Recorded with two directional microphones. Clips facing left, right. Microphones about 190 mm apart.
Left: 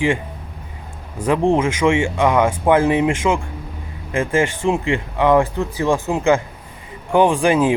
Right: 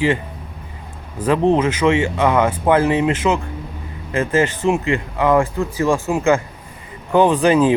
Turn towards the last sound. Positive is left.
turn(degrees=10)  # may be behind; listen again after turning